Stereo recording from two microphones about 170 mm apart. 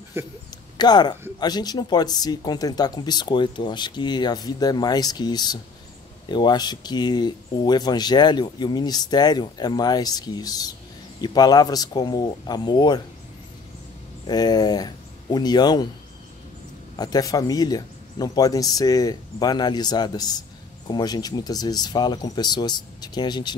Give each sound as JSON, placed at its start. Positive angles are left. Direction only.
{"t": 0.2, "sound": "speech", "side_deg": -15}
{"t": 0.7, "sound": "speech", "side_deg": 25}
{"t": 14.2, "sound": "speech", "side_deg": 25}
{"t": 17.0, "sound": "speech", "side_deg": 20}